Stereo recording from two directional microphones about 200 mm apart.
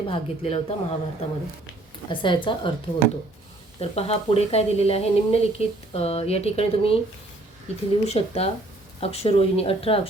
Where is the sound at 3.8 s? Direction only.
30° left (ahead or behind).